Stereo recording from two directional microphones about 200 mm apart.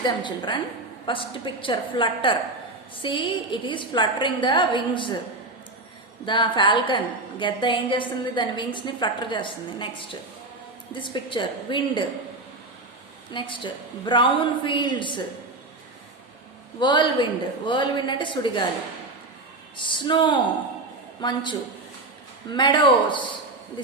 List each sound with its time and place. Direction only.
0.0 s a woman's voice: 25° left (ahead or behind)
6.2 s a woman's voice: 25° left (ahead or behind)
13.3 s a woman's voice: 25° left (ahead or behind)
16.8 s a woman's voice: 25° left (ahead or behind)
19.7 s a woman's voice: 25° left (ahead or behind)